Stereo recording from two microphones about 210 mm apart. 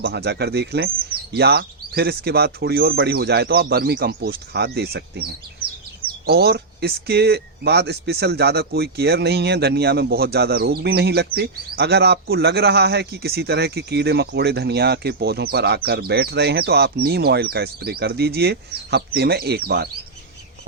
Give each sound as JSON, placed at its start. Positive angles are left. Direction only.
{"t": 0.0, "sound": "speech", "side_deg": -50}